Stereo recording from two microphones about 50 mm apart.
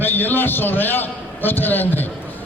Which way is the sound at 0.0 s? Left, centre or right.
Left.